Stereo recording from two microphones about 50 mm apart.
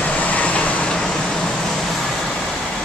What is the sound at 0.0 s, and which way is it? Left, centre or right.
Vehicle, left.